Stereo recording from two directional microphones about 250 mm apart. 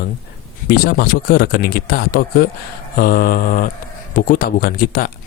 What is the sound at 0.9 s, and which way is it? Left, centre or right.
Speech, left.